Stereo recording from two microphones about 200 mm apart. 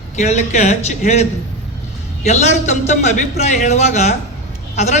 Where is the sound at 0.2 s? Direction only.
35° left (ahead or behind).